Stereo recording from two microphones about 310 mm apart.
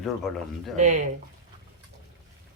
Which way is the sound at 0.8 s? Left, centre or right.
Right.